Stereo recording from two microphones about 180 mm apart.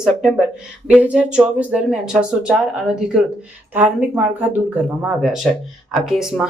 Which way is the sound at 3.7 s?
5° right (ahead or behind).